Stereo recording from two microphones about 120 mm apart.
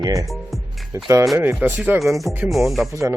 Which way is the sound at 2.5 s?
Centre (ahead or behind).